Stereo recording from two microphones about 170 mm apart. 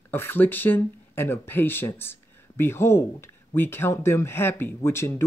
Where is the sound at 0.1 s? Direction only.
10° left (ahead or behind).